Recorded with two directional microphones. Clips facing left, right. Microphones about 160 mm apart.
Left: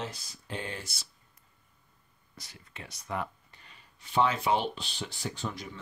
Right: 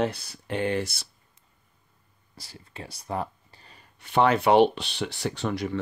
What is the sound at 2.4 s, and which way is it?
Speech, 30° right (ahead or behind).